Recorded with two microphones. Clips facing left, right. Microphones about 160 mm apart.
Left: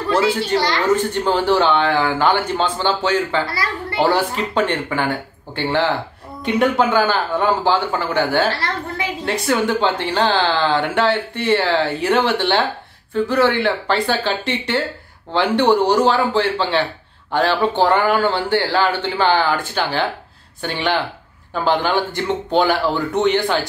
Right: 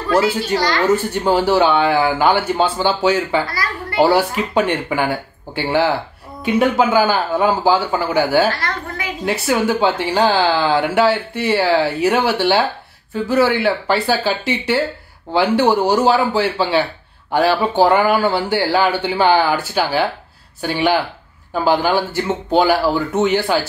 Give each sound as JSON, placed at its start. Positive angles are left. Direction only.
{"t": 0.6, "sound": "a woman's voice", "side_deg": 25}
{"t": 0.9, "sound": "speech", "side_deg": -10}
{"t": 8.5, "sound": "a woman's voice", "side_deg": 30}
{"t": 9.2, "sound": "speech", "side_deg": -10}